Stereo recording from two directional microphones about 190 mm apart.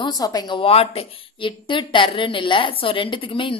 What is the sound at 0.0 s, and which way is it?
A woman's voice, 20° left (ahead or behind).